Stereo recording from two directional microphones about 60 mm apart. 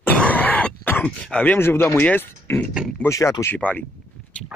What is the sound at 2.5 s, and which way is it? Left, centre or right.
Speech, left.